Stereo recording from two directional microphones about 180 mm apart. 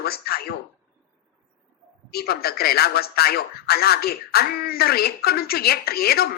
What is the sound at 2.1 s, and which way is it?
A woman's voice, 60° left (ahead or behind).